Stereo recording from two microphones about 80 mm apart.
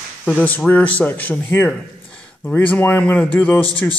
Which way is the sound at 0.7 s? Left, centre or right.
Centre.